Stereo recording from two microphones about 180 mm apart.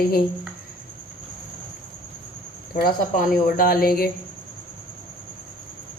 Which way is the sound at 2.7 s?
50° left (ahead or behind).